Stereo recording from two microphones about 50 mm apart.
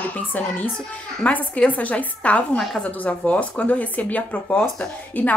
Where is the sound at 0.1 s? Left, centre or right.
Left.